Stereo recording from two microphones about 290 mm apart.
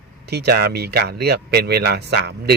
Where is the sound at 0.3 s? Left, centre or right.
Right.